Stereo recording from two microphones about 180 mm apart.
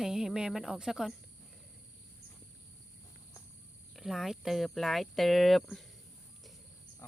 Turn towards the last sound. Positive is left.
turn(degrees=0)  # may be behind; listen again after turning